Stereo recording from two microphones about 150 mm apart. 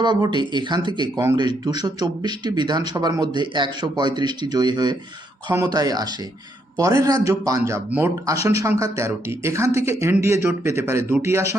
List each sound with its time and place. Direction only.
0.0 s speech: 30° right (ahead or behind)